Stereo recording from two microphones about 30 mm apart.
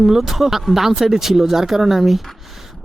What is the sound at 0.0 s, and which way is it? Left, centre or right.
Speech, centre.